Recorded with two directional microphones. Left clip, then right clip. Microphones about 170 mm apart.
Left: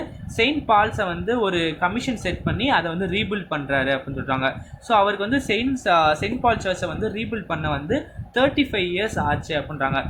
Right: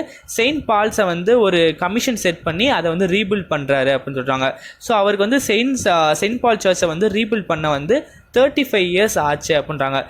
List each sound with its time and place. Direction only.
0.3 s speech: 45° right (ahead or behind)